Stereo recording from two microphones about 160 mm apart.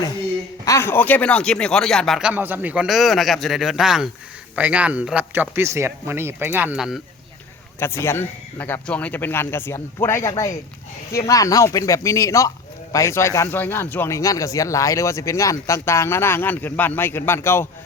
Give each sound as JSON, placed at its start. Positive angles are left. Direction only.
{"t": 0.6, "sound": "a man's voice", "side_deg": 15}
{"t": 2.3, "sound": "a man's voice", "side_deg": -10}
{"t": 7.8, "sound": "speech", "side_deg": 15}